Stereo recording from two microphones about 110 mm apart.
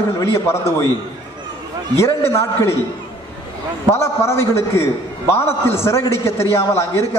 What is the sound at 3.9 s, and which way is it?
A man's voice, 25° left (ahead or behind).